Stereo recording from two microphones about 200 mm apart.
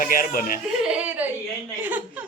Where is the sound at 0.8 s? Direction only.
5° right (ahead or behind).